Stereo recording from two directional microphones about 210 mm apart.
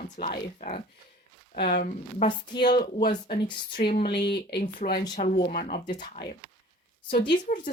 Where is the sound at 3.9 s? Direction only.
25° left (ahead or behind).